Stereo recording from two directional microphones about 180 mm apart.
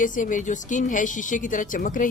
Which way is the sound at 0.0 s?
45° left (ahead or behind).